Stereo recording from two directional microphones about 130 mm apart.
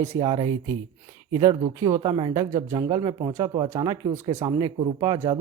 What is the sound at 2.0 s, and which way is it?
Speech, 40° right (ahead or behind).